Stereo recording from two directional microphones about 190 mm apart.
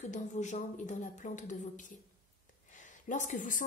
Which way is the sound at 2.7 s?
40° left (ahead or behind).